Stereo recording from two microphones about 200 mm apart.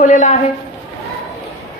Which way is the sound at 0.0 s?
40° left (ahead or behind).